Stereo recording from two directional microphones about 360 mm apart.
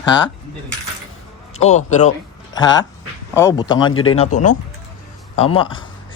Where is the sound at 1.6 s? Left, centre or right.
Centre.